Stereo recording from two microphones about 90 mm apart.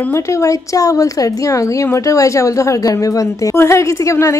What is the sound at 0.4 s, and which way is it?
Speech, 40° left (ahead or behind).